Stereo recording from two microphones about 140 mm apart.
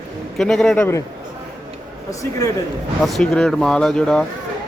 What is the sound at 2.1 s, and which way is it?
Speech, 25° left (ahead or behind).